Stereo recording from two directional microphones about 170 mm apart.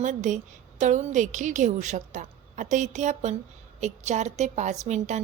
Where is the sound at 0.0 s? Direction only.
45° right (ahead or behind).